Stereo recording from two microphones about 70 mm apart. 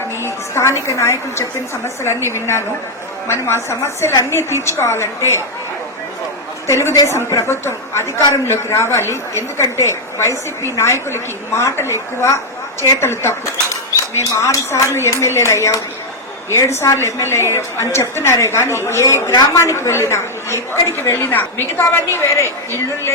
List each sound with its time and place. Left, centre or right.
0.2 s music: left
0.9 s a woman's voice: left
6.7 s a woman's voice: left
6.9 s a woman's voice: left
7.3 s a woman's voice: left